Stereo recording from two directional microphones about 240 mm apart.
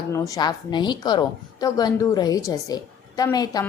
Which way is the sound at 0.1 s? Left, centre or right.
Centre.